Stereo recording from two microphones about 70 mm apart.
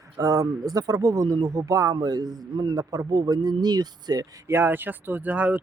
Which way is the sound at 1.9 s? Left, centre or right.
Right.